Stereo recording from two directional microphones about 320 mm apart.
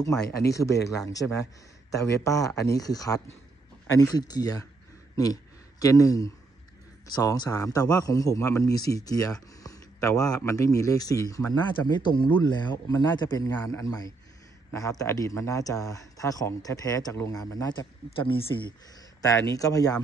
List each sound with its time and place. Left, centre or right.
0.0 s a man's voice: centre
2.2 s a man's voice: centre
18.9 s a sound: centre
19.5 s a man's voice: centre